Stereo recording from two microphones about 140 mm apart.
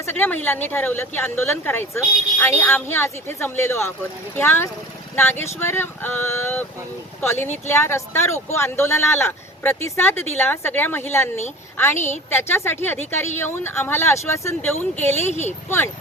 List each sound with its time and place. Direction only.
0.0 s speech: 15° left (ahead or behind)
15.3 s speech: 55° left (ahead or behind)